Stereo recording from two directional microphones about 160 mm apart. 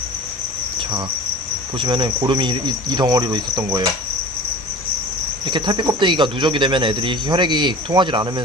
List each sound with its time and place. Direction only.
1.8 s speech: 30° right (ahead or behind)
5.5 s speech: 30° right (ahead or behind)